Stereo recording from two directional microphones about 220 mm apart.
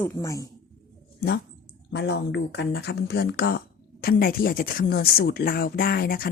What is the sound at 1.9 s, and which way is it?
Speech, 50° left (ahead or behind).